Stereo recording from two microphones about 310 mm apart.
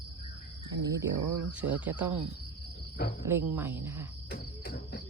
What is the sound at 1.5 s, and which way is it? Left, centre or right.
Speech, centre.